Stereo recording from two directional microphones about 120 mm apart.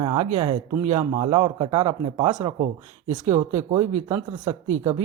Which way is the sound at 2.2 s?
40° right (ahead or behind).